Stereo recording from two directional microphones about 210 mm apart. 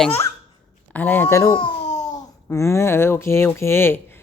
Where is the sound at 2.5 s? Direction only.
15° left (ahead or behind).